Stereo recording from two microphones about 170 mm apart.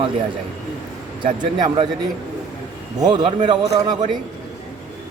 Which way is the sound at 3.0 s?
25° right (ahead or behind).